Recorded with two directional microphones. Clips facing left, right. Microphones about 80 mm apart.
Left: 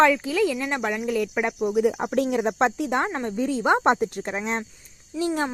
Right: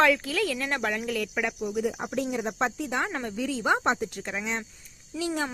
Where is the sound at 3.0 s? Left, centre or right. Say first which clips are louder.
Left 5 dB; left.